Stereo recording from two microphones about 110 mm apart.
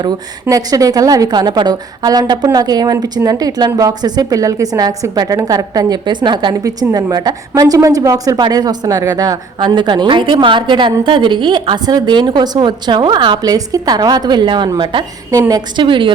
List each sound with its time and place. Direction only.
0.4 s a woman's voice: 35° right (ahead or behind)
6.6 s a woman's voice: 30° right (ahead or behind)
15.3 s a woman's voice: 30° right (ahead or behind)
15.8 s a woman's voice: 50° right (ahead or behind)